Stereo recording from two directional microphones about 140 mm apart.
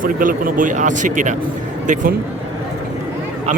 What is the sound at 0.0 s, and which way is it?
Speech, 80° right.